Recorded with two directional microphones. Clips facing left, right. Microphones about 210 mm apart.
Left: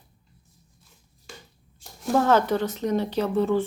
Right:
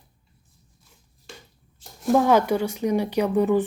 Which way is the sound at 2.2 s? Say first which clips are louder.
Right 1 dB; 15° right (ahead or behind).